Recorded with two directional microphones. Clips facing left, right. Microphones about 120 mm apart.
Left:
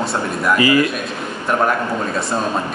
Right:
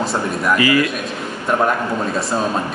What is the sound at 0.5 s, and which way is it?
Speech, 30° left (ahead or behind).